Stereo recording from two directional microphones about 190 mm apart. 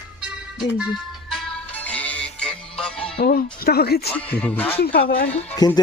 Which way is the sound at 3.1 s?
50° left (ahead or behind).